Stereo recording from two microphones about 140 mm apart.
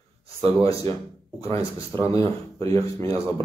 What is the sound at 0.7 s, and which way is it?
Speech, 25° left (ahead or behind).